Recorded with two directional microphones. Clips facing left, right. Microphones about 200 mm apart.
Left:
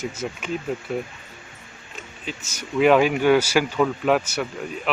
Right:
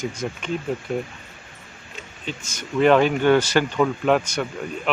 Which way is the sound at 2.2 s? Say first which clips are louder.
Right 2 dB; 5° left (ahead or behind).